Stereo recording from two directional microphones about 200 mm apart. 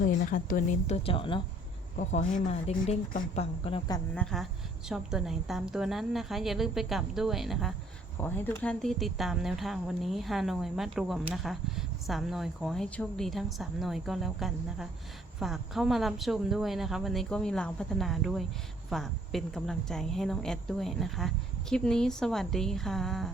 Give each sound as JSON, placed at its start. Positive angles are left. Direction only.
{"t": 0.0, "sound": "speech", "side_deg": 40}
{"t": 2.0, "sound": "speech", "side_deg": 40}
{"t": 4.1, "sound": "a woman's voice", "side_deg": 5}
{"t": 8.2, "sound": "a woman's voice", "side_deg": 10}